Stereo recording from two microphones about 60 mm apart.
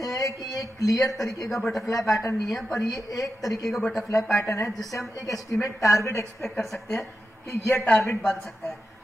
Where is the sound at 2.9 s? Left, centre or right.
Left.